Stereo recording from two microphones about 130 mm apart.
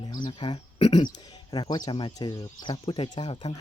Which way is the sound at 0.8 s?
55° left (ahead or behind).